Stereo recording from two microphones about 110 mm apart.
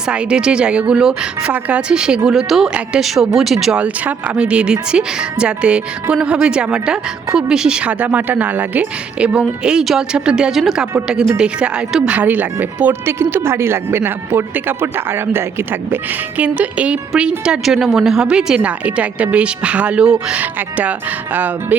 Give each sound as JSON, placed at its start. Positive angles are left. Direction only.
{"t": 0.1, "sound": "speech", "side_deg": -10}